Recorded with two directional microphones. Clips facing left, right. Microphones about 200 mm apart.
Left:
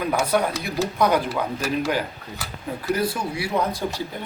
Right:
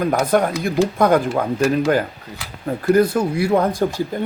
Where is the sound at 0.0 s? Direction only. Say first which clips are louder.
Right 5 dB; 45° right (ahead or behind).